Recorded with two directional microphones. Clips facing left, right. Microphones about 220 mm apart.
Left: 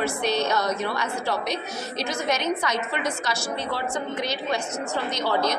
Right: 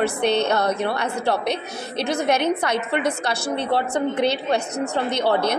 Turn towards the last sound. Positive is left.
turn(degrees=-60)  # may be behind; listen again after turning